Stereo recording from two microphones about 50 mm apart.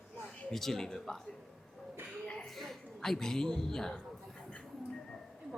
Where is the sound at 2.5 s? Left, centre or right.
Centre.